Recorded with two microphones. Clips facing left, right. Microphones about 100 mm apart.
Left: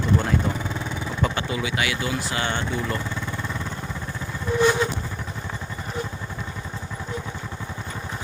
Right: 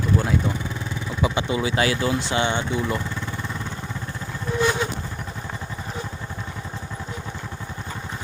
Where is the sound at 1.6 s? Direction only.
35° right (ahead or behind); by 3.0 s 15° right (ahead or behind).